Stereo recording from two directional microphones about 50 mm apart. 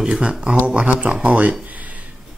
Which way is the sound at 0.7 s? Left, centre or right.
Right.